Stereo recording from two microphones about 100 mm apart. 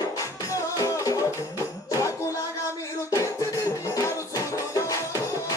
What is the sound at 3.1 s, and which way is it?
Music, 30° left (ahead or behind).